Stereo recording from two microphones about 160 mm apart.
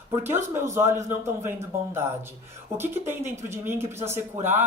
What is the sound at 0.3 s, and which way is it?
Speech, 15° right (ahead or behind).